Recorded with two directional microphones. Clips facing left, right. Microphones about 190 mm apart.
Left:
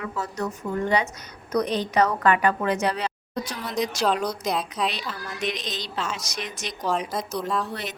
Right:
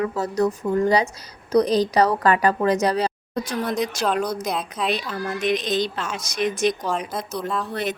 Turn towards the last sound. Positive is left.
turn(degrees=0)  # may be behind; listen again after turning